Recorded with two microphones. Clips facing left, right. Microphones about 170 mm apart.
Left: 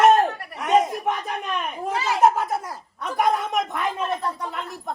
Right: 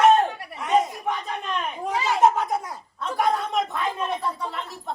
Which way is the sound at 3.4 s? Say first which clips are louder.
Even; 20° left (ahead or behind).